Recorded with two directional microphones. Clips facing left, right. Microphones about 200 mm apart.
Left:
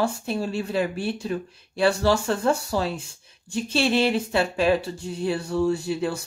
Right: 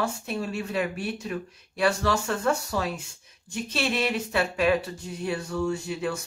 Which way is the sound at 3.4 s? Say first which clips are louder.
Left 5 dB; 30° left (ahead or behind).